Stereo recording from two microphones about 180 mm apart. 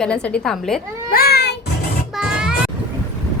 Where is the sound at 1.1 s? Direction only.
55° left (ahead or behind).